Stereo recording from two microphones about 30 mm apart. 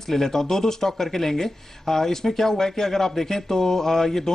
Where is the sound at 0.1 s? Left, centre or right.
Centre.